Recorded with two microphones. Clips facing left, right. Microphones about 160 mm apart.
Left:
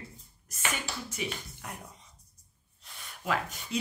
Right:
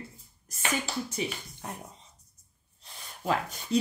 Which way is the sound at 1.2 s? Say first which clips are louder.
Right 3 dB; 35° right (ahead or behind).